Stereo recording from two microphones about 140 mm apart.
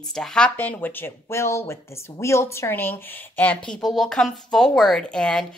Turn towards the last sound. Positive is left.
turn(degrees=5)  # may be behind; listen again after turning